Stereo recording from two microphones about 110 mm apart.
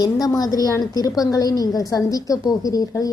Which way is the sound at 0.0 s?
35° left (ahead or behind).